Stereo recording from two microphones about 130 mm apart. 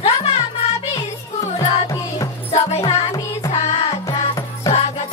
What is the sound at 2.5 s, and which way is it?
Music, 50° left (ahead or behind).